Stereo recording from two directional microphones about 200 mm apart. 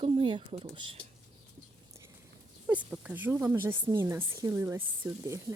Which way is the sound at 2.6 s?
5° right (ahead or behind).